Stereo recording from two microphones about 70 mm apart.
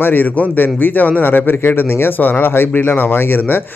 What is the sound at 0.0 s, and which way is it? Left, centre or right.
A man's voice, left.